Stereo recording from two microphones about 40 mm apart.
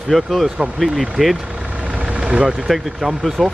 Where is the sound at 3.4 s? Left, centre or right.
Centre.